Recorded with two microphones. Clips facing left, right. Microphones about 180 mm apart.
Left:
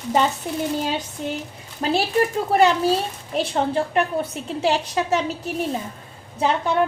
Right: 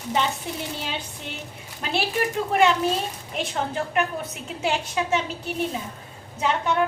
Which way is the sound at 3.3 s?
30° left (ahead or behind).